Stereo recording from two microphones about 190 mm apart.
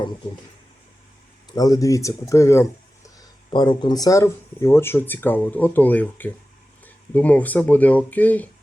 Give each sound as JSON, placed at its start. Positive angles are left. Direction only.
{"t": 1.5, "sound": "speech", "side_deg": 20}